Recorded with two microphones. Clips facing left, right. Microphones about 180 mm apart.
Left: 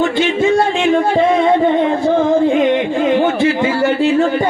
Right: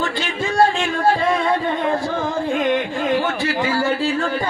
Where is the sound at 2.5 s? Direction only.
20° left (ahead or behind).